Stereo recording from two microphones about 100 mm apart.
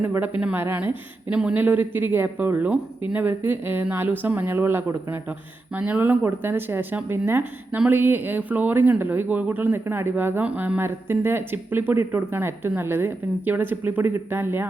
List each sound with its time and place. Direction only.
0.0 s a woman's voice: 20° right (ahead or behind)